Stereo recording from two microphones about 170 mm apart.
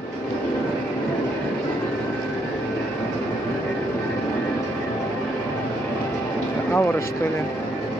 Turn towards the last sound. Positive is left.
turn(degrees=15)  # may be behind; listen again after turning